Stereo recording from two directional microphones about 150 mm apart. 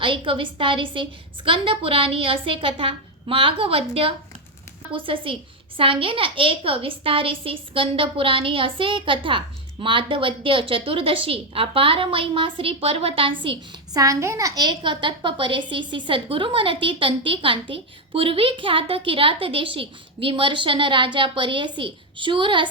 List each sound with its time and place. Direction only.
0.0 s a child's voice: 35° right (ahead or behind)
14.0 s a child's voice: 20° right (ahead or behind)